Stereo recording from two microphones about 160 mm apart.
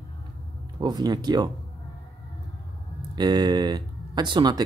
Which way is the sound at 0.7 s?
25° right (ahead or behind).